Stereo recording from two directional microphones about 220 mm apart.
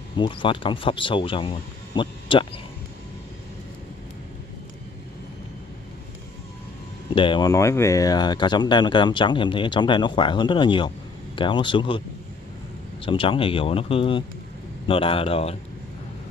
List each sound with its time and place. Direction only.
0.2 s speech: 25° left (ahead or behind)
7.2 s speech: 20° left (ahead or behind)
13.0 s speech: 25° left (ahead or behind)